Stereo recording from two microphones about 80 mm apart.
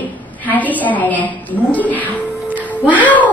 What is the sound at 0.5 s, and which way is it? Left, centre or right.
A woman's voice, left.